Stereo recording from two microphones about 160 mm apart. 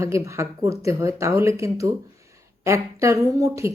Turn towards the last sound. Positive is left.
turn(degrees=-20)  # may be behind; listen again after turning